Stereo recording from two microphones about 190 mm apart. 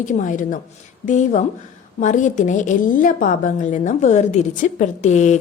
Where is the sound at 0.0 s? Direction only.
40° left (ahead or behind).